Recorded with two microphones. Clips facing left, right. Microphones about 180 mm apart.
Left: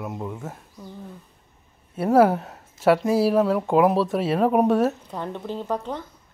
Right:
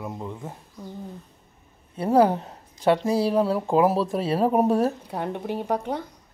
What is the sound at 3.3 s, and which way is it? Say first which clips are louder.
Speech: left 2 dB; 30° right (ahead or behind).